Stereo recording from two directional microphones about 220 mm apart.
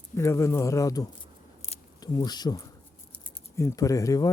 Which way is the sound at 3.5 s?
15° left (ahead or behind).